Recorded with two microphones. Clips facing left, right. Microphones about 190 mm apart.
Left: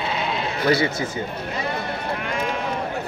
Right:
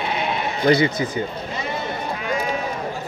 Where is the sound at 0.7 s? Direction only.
15° right (ahead or behind).